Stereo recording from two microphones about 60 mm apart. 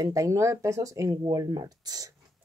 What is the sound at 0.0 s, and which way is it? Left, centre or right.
Speech, right.